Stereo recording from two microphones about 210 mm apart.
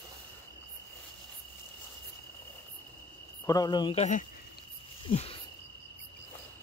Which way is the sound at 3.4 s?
20° left (ahead or behind).